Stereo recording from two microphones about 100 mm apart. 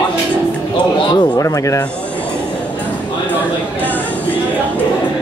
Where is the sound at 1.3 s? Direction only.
35° left (ahead or behind).